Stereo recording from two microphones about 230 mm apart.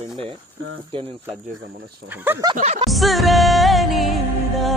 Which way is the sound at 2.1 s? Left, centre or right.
Centre.